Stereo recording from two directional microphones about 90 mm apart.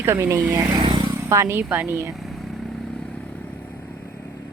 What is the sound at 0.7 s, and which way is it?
Vehicle, 55° right (ahead or behind).